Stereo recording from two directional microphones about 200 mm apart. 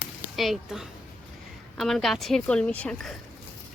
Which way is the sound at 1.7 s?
Centre (ahead or behind).